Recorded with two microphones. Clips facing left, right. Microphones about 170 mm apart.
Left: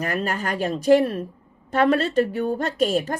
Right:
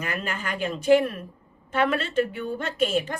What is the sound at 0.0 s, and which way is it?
A woman's voice, 40° left (ahead or behind).